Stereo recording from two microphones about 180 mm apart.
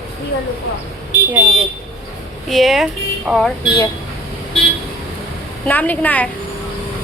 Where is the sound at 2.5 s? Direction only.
Centre (ahead or behind).